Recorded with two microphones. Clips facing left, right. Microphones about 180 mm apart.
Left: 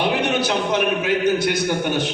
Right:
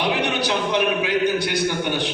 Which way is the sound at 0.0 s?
45° left (ahead or behind).